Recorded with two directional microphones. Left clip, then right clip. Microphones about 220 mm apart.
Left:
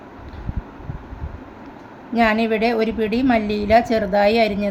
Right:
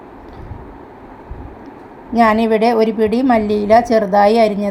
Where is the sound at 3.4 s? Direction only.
40° right (ahead or behind).